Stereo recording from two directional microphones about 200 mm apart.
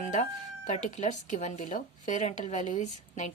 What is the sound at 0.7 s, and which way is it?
Speech, 35° left (ahead or behind).